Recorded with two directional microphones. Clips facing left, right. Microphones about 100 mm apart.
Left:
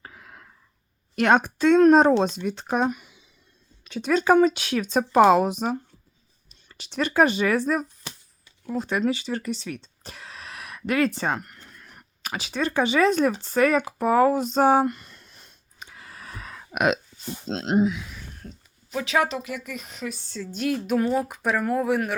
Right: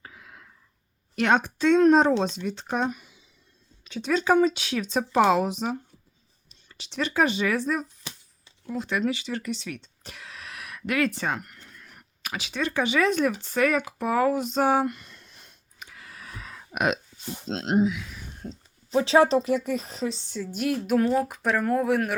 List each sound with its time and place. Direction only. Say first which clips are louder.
0.0 s a sound: left 2 dB; 45° left (ahead or behind)
1.1 s speech: left 3 dB; 50° left (ahead or behind); by 3.2 s 65° left (ahead or behind)
3.8 s speech: left 3 dB; 50° left (ahead or behind); by 15.0 s 35° left (ahead or behind)
15.8 s hiccup: left 2 dB; 30° left (ahead or behind); by 17.0 s 85° left
18.4 s speech: right 5 dB; 30° right (ahead or behind); by 22.1 s centre (ahead or behind)